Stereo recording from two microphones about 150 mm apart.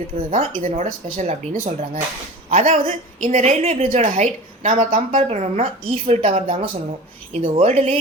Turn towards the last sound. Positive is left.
turn(degrees=-45)  # may be behind; listen again after turning